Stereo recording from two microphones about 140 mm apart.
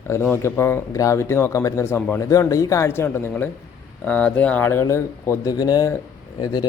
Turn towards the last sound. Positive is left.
turn(degrees=30)  # may be behind; listen again after turning